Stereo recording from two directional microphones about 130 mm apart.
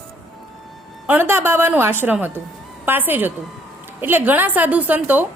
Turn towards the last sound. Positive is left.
turn(degrees=-15)  # may be behind; listen again after turning